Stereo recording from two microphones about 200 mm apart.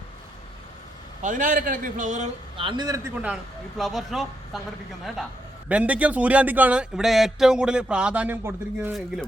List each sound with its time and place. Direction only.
1.2 s a man's voice: 40° right (ahead or behind); by 3.3 s 10° right (ahead or behind)
3.8 s speech: centre (ahead or behind)
5.6 s speech: 5° right (ahead or behind)